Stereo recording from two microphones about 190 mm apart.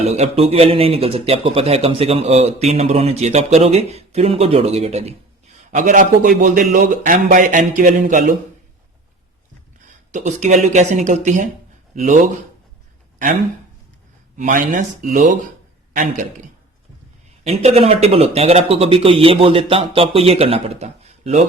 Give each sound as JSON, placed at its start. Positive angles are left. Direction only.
{"t": 0.0, "sound": "a man's voice", "side_deg": -35}
{"t": 10.1, "sound": "speech", "side_deg": -40}
{"t": 14.3, "sound": "a man's voice", "side_deg": -40}
{"t": 17.4, "sound": "speech", "side_deg": -35}